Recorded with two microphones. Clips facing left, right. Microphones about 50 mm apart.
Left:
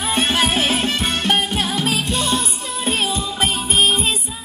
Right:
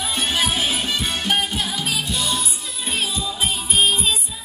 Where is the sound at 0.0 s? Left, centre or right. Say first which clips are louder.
Left 4 dB; left.